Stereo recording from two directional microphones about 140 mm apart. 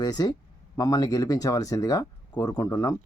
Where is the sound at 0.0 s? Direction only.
30° left (ahead or behind).